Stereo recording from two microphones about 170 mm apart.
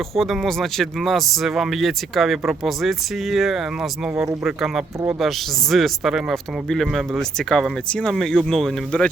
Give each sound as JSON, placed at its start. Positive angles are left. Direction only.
{"t": 0.2, "sound": "speech", "side_deg": 0}